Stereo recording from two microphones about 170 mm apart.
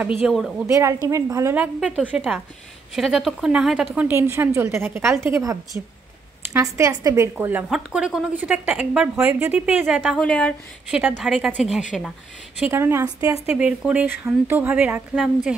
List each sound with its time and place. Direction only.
0.0 s a woman's voice: 10° right (ahead or behind)
0.7 s a woman's voice: 20° right (ahead or behind)
9.8 s a woman's voice: centre (ahead or behind)
10.9 s a woman's voice: 10° right (ahead or behind)
11.2 s a woman's voice: centre (ahead or behind)
12.5 s a woman's voice: 10° right (ahead or behind)
13.6 s a woman's voice: 5° right (ahead or behind)